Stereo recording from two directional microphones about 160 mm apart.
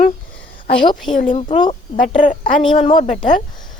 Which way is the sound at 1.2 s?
45° left (ahead or behind).